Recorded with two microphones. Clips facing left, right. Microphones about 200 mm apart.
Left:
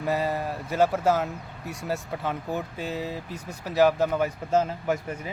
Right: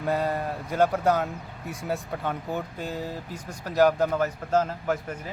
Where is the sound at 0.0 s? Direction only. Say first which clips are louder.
Even; 5° left (ahead or behind).